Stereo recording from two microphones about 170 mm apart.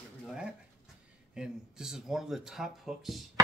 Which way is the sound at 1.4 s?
5° right (ahead or behind).